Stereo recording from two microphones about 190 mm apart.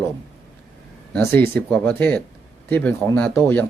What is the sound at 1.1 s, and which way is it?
Speech, 10° left (ahead or behind).